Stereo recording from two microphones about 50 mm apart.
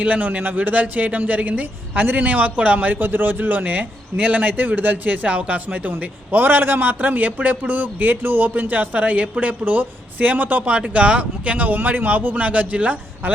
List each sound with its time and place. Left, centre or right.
0.0 s speech: right